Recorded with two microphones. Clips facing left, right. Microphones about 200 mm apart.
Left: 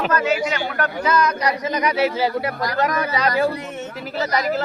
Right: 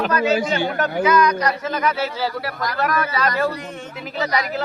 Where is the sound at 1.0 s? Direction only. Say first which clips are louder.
Right 3 dB; centre (ahead or behind).